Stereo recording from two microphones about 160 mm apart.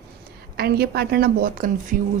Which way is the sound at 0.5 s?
80° right.